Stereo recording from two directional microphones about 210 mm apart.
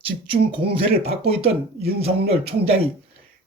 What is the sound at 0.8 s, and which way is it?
Speech, 30° right (ahead or behind).